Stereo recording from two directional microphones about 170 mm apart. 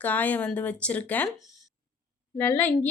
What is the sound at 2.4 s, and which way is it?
Speech, 10° left (ahead or behind).